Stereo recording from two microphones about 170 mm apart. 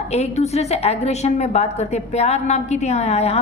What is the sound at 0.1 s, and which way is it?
A woman's voice, 40° left (ahead or behind).